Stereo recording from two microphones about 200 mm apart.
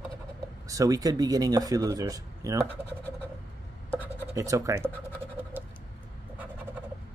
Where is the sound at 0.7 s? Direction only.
15° right (ahead or behind).